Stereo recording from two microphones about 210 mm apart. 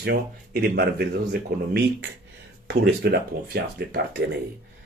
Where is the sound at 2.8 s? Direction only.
50° right (ahead or behind).